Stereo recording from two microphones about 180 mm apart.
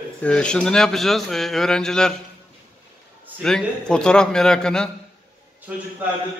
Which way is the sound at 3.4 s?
5° left (ahead or behind).